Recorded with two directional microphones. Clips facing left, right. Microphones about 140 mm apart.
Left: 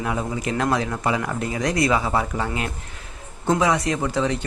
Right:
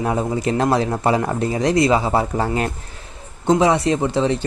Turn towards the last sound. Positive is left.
turn(degrees=-30)  # may be behind; listen again after turning